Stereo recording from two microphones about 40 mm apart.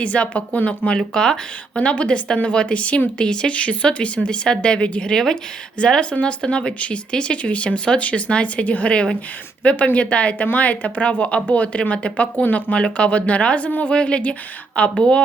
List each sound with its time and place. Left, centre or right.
0.0 s a woman's voice: left
0.9 s speech: centre
1.8 s a woman's voice: left
5.1 s speech: centre
5.8 s a woman's voice: left
12.7 s a woman's voice: left
13.9 s speech: left